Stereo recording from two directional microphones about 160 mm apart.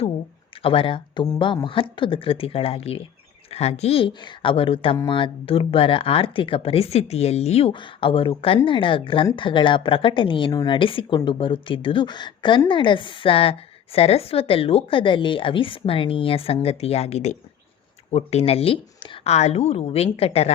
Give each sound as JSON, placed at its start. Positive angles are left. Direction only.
{"t": 0.5, "sound": "speech", "side_deg": 35}